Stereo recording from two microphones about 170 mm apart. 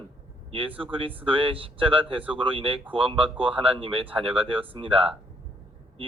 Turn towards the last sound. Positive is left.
turn(degrees=-30)  # may be behind; listen again after turning